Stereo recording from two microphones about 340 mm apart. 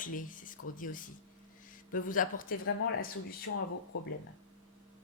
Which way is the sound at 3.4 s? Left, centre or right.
Left.